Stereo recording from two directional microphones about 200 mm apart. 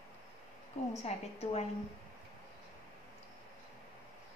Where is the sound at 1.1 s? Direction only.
35° left (ahead or behind).